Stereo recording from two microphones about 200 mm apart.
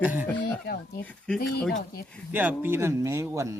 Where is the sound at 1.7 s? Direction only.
50° left (ahead or behind).